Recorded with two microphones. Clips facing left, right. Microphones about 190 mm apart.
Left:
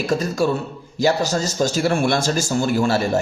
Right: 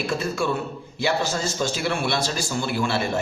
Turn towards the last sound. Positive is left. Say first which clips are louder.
# left 6 dB
turn(degrees=40)  # may be behind; listen again after turning